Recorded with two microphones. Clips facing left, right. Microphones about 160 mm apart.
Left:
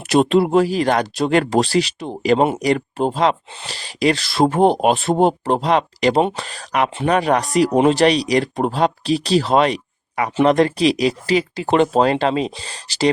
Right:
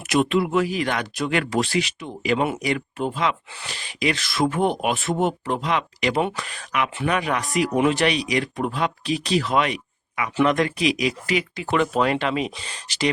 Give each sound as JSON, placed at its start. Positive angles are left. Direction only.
{"t": 0.1, "sound": "speech", "side_deg": 35}